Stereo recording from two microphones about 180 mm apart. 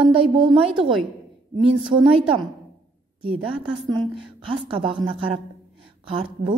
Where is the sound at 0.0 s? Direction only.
30° right (ahead or behind).